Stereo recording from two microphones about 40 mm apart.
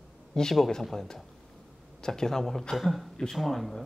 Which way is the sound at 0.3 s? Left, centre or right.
Centre.